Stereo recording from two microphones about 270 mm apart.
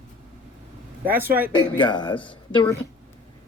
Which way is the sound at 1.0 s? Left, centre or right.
Centre.